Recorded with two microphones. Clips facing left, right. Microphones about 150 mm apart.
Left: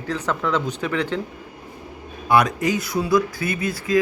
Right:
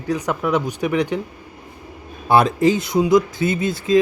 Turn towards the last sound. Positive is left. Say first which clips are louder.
# right 4 dB
turn(degrees=-25)  # may be behind; listen again after turning